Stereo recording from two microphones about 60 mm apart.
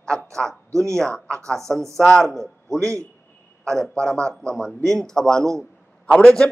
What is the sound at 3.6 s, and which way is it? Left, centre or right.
A man's voice, centre.